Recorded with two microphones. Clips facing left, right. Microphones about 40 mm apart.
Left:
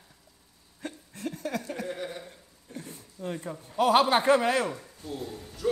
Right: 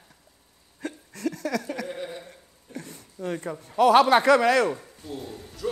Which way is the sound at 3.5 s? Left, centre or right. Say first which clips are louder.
Right 4 dB; right.